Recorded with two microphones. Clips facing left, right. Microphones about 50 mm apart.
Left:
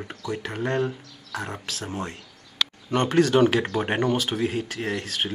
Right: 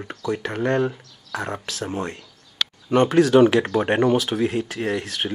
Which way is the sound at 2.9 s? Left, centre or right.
Centre.